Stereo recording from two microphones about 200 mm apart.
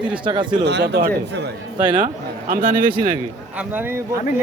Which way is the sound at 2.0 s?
40° right (ahead or behind).